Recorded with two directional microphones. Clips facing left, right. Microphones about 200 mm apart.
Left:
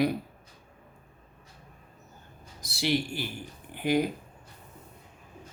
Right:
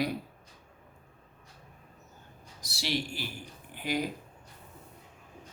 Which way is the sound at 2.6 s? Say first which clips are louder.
Left 5 dB; 55° left (ahead or behind).